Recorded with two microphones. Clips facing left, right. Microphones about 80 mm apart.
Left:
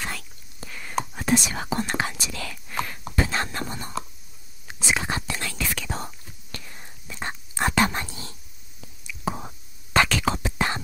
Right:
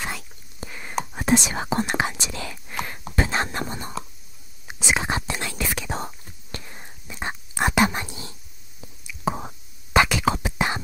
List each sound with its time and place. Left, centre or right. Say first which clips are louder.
0.0 s whispering: right 2 dB; right
1.1 s speech: right 4 dB; right
4.6 s whispering: right 2 dB; centre